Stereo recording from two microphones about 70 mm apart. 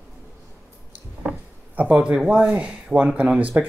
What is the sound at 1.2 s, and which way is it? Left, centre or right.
Speech, centre.